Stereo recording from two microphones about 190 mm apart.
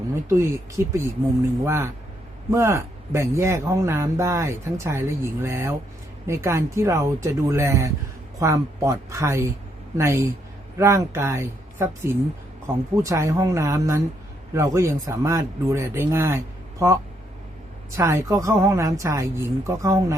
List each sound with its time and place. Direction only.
0.3 s speech: 15° right (ahead or behind)
17.9 s speech: 15° right (ahead or behind)